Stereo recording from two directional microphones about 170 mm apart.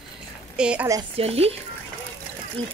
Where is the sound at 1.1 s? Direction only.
35° right (ahead or behind).